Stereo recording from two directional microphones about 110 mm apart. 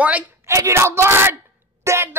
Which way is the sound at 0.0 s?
15° right (ahead or behind).